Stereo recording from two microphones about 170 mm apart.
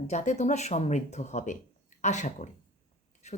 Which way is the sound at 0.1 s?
40° left (ahead or behind).